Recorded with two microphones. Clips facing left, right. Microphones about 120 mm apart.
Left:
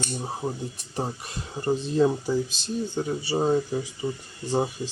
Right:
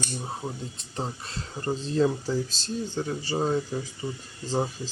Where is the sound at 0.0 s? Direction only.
15° left (ahead or behind).